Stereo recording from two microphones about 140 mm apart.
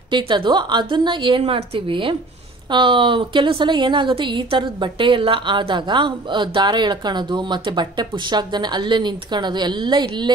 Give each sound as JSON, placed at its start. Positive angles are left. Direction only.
{"t": 0.1, "sound": "a woman's voice", "side_deg": -35}